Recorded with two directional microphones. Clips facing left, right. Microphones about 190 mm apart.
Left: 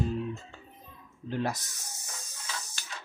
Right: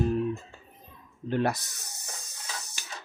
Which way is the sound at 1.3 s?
65° right (ahead or behind).